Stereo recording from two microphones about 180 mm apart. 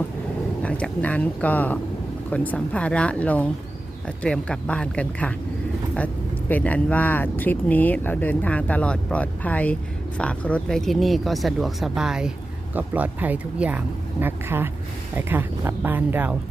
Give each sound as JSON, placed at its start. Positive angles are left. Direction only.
{"t": 0.6, "sound": "speech", "side_deg": 5}
{"t": 6.5, "sound": "speech", "side_deg": 10}